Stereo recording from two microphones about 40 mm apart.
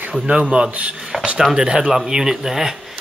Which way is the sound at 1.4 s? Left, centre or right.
Centre.